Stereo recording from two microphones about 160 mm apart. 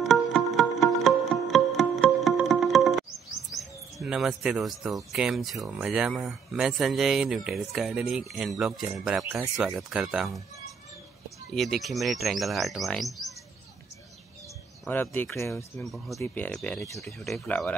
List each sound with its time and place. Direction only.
0.0 s music: centre (ahead or behind)
3.5 s speech: centre (ahead or behind)
14.9 s speech: 10° left (ahead or behind)
15.8 s speech: centre (ahead or behind)
16.2 s speech: 10° left (ahead or behind)